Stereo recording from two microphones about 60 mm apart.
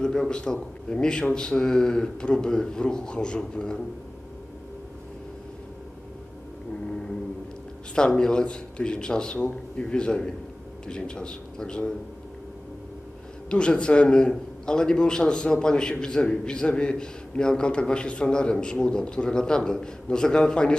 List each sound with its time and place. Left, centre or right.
0.0 s a man's voice: centre
7.9 s a man's voice: centre
13.5 s a man's voice: centre